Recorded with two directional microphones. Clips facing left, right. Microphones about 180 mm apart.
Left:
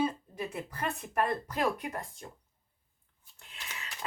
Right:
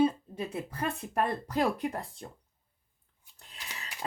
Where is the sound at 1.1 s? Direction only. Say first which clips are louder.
Right 2 dB; 30° right (ahead or behind).